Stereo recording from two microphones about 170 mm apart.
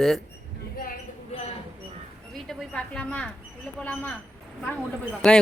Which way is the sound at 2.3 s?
5° left (ahead or behind).